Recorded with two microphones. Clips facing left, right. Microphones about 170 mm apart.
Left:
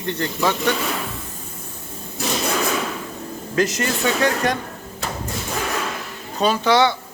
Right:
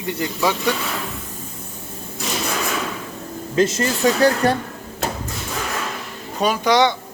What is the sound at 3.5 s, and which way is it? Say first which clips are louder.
Speech: right 2 dB; 25° right (ahead or behind).